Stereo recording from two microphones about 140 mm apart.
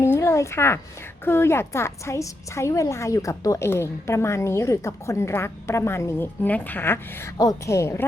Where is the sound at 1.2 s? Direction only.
15° left (ahead or behind).